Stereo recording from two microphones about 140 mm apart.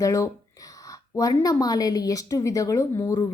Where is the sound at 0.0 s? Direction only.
20° left (ahead or behind).